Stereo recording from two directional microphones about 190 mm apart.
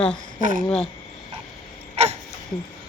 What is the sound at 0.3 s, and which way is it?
Speech, 45° right (ahead or behind).